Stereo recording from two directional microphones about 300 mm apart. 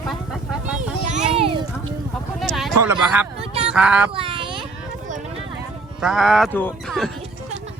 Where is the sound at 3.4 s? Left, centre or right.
Centre.